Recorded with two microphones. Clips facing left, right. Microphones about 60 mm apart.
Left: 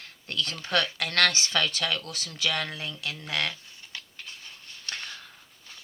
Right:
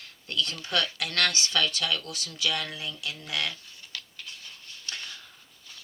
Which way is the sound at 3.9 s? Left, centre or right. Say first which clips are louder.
Even; left.